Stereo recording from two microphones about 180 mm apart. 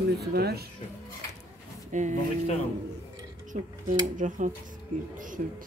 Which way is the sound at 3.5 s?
45° right (ahead or behind).